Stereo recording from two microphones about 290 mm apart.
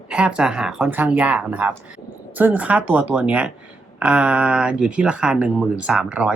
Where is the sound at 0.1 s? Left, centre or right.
Centre.